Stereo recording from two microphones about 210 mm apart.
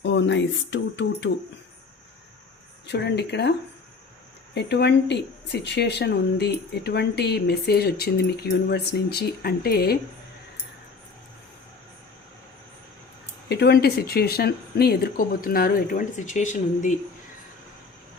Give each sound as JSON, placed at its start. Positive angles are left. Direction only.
{"t": 0.0, "sound": "a sound", "side_deg": 60}
{"t": 2.8, "sound": "speech", "side_deg": 55}
{"t": 4.5, "sound": "speech", "side_deg": 55}
{"t": 13.5, "sound": "speech", "side_deg": 50}